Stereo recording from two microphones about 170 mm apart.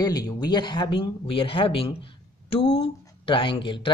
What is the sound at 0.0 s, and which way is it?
Speech, 25° left (ahead or behind).